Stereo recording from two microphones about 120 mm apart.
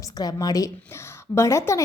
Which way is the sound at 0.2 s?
35° left (ahead or behind).